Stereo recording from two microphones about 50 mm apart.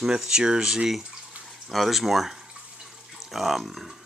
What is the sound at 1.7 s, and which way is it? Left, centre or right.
Speech, centre.